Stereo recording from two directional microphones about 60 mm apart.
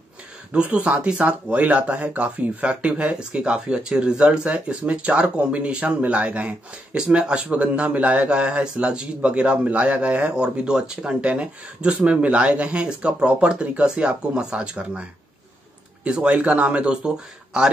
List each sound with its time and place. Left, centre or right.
0.5 s speech: centre